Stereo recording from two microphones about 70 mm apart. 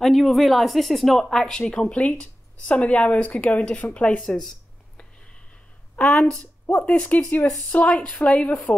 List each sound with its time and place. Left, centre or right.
0.0 s speech: centre
4.2 s a sound: centre
6.1 s speech: centre
6.4 s speech: left